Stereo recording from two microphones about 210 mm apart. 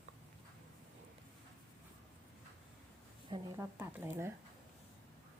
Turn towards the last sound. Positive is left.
turn(degrees=-10)  # may be behind; listen again after turning